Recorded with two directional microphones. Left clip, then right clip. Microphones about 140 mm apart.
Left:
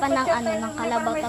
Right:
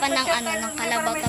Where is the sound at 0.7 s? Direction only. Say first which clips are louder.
Right 3 dB; 25° left (ahead or behind).